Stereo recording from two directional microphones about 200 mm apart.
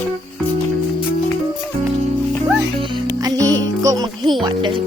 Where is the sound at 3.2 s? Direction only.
20° right (ahead or behind).